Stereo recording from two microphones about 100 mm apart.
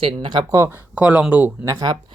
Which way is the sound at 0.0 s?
55° right (ahead or behind).